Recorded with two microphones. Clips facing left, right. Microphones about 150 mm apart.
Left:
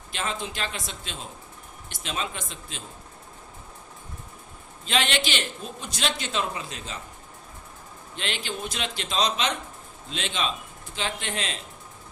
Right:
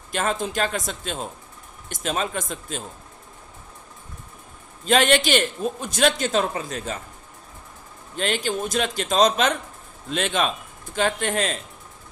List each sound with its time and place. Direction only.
0.1 s a man's voice: 50° right (ahead or behind)
4.9 s a man's voice: 45° right (ahead or behind)
8.1 s a man's voice: 45° right (ahead or behind)